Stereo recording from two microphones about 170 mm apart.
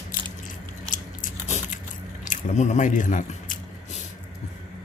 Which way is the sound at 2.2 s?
45° left (ahead or behind).